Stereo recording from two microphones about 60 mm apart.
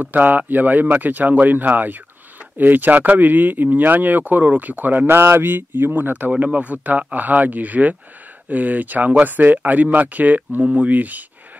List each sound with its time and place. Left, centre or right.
0.0 s speech: right